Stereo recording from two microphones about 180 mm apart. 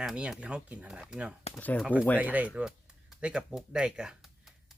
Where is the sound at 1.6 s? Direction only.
10° left (ahead or behind).